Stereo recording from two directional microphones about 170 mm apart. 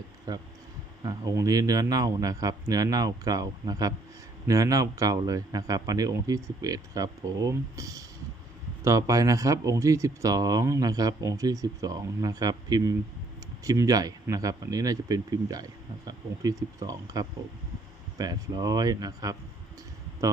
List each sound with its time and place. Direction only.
0.3 s speech: 20° right (ahead or behind)